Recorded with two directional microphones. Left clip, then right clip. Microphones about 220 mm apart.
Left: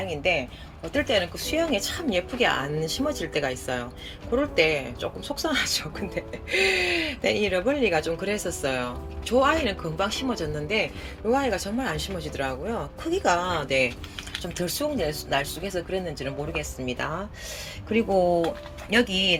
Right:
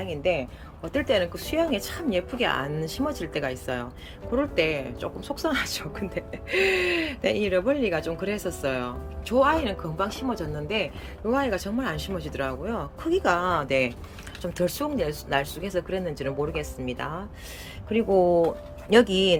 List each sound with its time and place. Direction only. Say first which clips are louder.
0.1 s speech: even; 10° right (ahead or behind)
18.2 s speech: right 2 dB; 25° right (ahead or behind)